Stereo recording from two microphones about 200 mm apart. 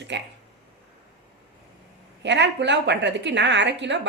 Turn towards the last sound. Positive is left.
turn(degrees=-60)  # may be behind; listen again after turning